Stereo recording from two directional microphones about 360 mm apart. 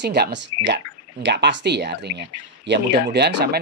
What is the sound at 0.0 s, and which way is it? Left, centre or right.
Speech, right.